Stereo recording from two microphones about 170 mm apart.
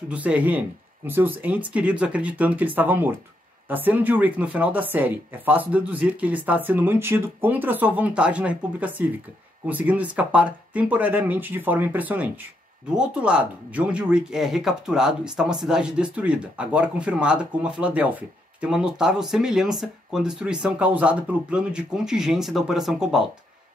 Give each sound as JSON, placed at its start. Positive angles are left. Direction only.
{"t": 0.1, "sound": "a woman's voice", "side_deg": -10}